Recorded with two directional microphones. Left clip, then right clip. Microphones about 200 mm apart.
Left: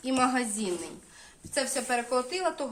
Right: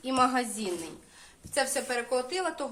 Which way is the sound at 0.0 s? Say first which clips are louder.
Right 1 dB; 10° left (ahead or behind).